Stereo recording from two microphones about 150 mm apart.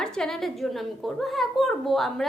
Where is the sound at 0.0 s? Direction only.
5° left (ahead or behind).